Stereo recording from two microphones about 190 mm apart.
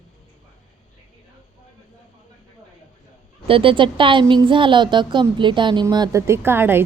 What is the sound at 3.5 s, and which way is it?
A woman's voice, 30° right (ahead or behind).